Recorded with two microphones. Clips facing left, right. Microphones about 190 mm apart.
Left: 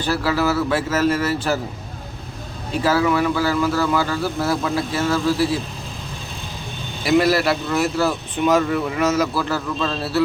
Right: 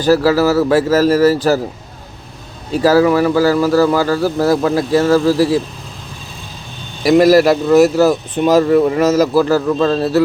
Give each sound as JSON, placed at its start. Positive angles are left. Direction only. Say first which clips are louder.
{"t": 0.0, "sound": "speech", "louder": "right 9 dB", "side_deg": -40}
{"t": 2.7, "sound": "speech", "louder": "right 7 dB", "side_deg": -40}
{"t": 7.0, "sound": "speech", "louder": "right 8 dB", "side_deg": -40}